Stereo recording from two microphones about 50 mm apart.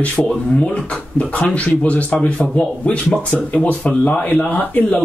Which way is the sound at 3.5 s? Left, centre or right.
Left.